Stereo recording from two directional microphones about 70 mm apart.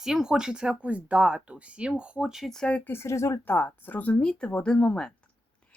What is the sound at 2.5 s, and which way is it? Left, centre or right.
Speech, centre.